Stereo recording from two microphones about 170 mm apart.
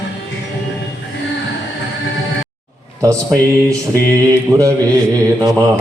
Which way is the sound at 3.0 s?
20° right (ahead or behind).